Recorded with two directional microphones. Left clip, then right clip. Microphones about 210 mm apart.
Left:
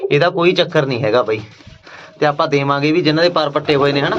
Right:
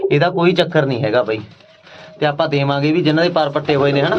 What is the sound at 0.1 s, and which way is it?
A man's voice, 10° right (ahead or behind).